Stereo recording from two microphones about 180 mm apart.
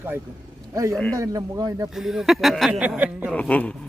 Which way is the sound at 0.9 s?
5° left (ahead or behind).